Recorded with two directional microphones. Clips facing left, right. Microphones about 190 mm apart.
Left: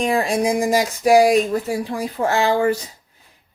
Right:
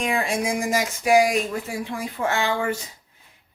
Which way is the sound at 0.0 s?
35° left (ahead or behind).